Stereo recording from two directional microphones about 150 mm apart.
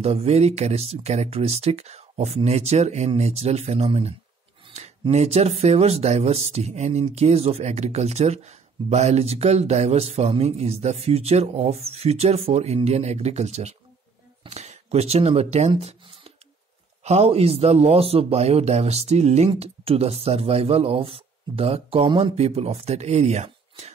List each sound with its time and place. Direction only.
0.0 s speech: 45° right (ahead or behind)
4.6 s a sound: 45° right (ahead or behind)
5.1 s speech: 45° right (ahead or behind)